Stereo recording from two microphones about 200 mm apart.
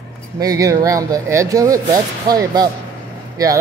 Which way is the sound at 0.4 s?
15° right (ahead or behind).